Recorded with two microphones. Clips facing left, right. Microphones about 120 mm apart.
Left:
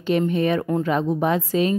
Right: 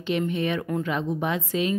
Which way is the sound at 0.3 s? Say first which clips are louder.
Left 5 dB; 40° left (ahead or behind).